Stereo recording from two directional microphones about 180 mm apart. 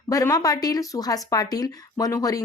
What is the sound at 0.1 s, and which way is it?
Speech, 20° left (ahead or behind).